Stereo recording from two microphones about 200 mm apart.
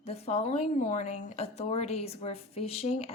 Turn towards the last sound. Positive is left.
turn(degrees=30)  # may be behind; listen again after turning